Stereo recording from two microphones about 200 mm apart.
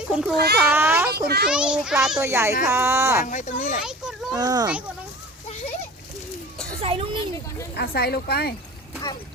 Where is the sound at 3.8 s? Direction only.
Centre (ahead or behind).